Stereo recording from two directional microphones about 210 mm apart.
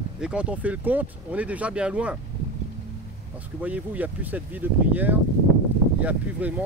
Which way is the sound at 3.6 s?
5° right (ahead or behind).